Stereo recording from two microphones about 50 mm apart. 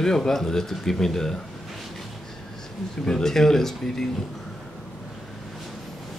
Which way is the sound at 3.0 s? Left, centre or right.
Centre.